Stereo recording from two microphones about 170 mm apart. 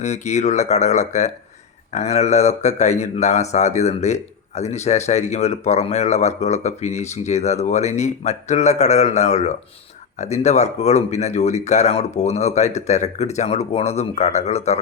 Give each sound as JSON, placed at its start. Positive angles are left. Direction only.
{"t": 0.0, "sound": "speech", "side_deg": 40}